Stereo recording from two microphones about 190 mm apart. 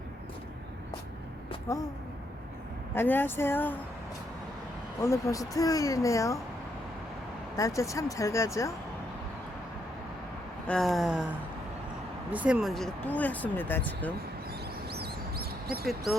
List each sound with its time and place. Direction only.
2.9 s speech: 10° left (ahead or behind)
5.0 s speech: 15° left (ahead or behind)
7.5 s speech: 15° left (ahead or behind)
10.7 s a sound: centre (ahead or behind)
12.3 s speech: 5° right (ahead or behind); by 14.1 s 10° left (ahead or behind)
14.8 s bird: 55° right (ahead or behind)